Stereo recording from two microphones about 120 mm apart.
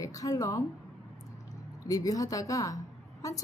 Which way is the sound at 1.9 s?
30° left (ahead or behind).